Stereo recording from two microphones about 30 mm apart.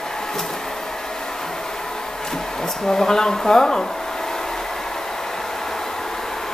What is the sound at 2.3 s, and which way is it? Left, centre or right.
Speech, centre.